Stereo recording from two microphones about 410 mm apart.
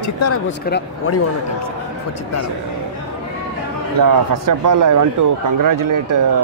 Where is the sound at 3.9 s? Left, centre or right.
Right.